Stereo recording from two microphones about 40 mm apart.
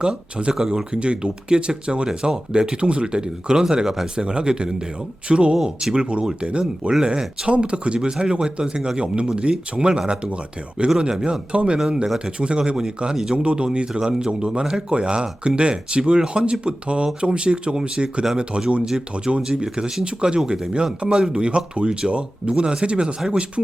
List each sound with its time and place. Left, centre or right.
0.0 s speech: right
0.5 s speech: centre
0.9 s speech: right
19.4 s speech: centre